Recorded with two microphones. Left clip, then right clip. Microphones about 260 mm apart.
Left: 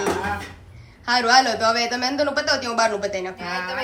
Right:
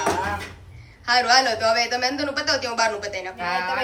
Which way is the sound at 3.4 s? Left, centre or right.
Centre.